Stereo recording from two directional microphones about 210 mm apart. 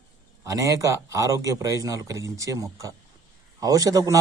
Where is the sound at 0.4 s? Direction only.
15° right (ahead or behind).